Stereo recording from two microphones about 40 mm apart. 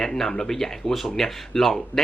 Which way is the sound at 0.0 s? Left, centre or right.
Centre.